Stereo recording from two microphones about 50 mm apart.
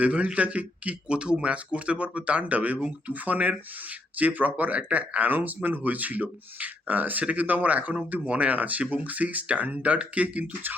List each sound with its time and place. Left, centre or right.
0.0 s speech: right